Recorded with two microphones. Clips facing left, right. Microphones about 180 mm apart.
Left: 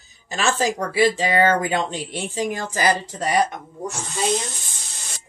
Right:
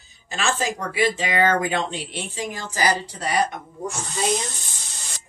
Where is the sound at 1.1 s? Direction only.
35° left (ahead or behind).